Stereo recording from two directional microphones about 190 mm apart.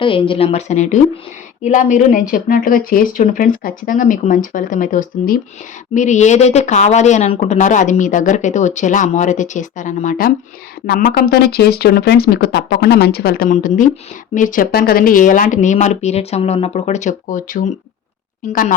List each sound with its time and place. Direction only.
0.0 s speech: 25° left (ahead or behind)